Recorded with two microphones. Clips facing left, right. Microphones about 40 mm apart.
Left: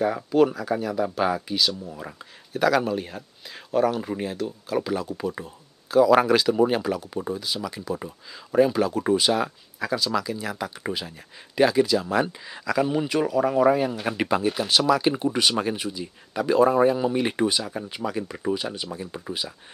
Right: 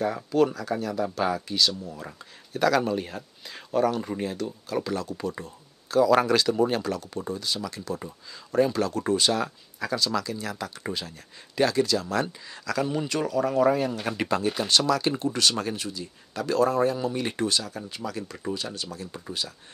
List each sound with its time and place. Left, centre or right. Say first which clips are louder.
0.0 s speech: left 3 dB; centre